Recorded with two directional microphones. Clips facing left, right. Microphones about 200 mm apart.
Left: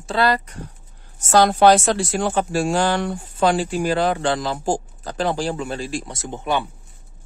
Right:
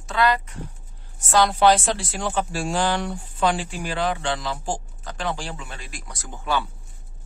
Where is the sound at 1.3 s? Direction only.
45° left (ahead or behind); by 6.7 s 20° left (ahead or behind).